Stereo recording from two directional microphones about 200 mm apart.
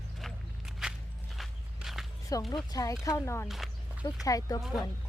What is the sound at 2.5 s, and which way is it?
Speech, 20° left (ahead or behind).